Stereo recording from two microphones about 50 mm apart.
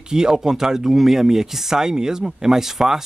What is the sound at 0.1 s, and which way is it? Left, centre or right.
Speech, centre.